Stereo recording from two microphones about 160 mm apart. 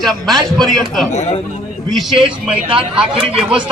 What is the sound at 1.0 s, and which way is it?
Speech, 50° left (ahead or behind).